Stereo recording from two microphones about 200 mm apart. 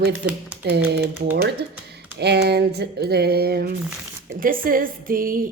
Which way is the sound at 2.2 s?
55° right (ahead or behind).